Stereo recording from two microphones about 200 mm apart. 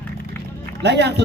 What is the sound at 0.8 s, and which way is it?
Speech, 60° right (ahead or behind).